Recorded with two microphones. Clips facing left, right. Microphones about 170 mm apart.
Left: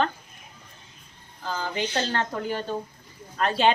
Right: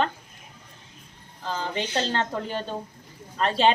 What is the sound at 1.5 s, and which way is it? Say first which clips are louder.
Speech: even; 25° right (ahead or behind).